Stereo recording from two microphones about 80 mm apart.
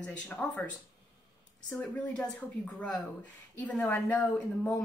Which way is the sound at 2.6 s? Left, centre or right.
Centre.